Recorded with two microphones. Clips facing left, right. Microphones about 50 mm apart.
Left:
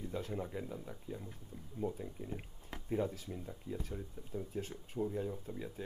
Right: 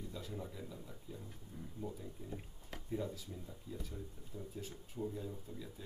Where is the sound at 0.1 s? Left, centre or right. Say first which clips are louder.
Left 6 dB; left.